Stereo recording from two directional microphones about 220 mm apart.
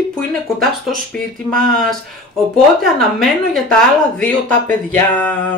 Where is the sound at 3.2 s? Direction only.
Centre (ahead or behind).